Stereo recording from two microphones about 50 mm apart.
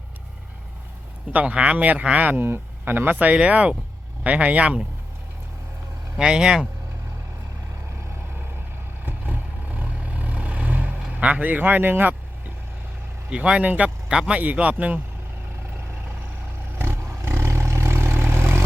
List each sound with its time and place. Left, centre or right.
1.3 s a man's voice: right
2.3 s a man's voice: right
6.1 s speech: centre
9.0 s vehicle: right
11.1 s speech: right
13.3 s a man's voice: right
14.1 s a man's voice: centre
16.7 s vehicle: right